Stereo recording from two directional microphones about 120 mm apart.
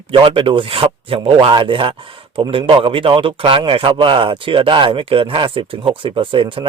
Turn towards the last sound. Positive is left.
turn(degrees=-45)  # may be behind; listen again after turning